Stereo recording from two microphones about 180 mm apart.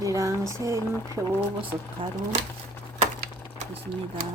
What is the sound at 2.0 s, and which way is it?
Speech, 30° right (ahead or behind).